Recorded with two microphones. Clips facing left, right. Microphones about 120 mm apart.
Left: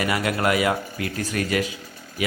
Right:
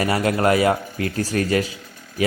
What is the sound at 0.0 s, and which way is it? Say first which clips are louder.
A man's voice: right 4 dB; 35° right (ahead or behind).